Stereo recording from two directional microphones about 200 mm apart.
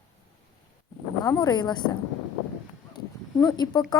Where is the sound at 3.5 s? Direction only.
20° left (ahead or behind).